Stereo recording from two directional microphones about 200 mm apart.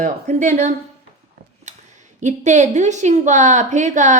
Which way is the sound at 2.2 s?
35° right (ahead or behind).